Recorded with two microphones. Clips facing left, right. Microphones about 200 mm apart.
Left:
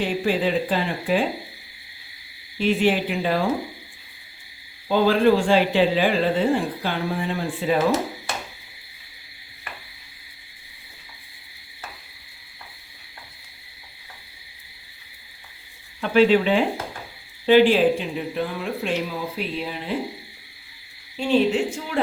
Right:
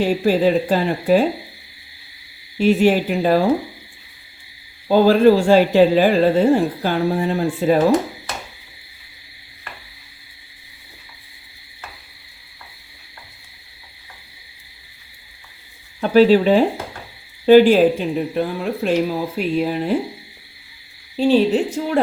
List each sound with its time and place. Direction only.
0.0 s a woman's voice: 40° right (ahead or behind)
2.6 s a woman's voice: 45° right (ahead or behind)
4.9 s a woman's voice: 40° right (ahead or behind)
16.0 s a woman's voice: 40° right (ahead or behind)
21.2 s a woman's voice: 35° right (ahead or behind)